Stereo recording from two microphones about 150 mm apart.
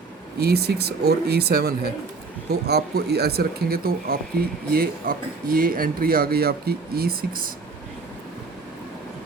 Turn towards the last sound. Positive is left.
turn(degrees=-80)